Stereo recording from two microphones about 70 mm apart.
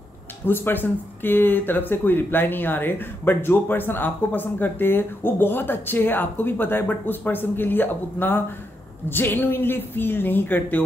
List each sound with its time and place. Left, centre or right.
0.5 s speech: left